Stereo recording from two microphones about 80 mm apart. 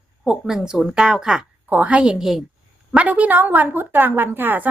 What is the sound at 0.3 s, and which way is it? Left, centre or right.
A woman's voice, centre.